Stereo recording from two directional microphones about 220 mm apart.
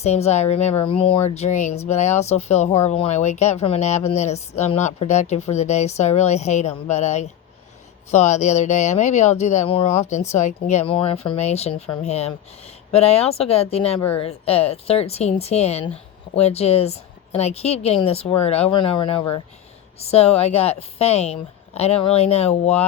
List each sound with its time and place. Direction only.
0.0 s a woman's voice: 30° left (ahead or behind)